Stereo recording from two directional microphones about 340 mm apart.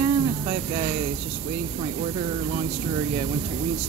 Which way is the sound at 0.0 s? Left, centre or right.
Centre.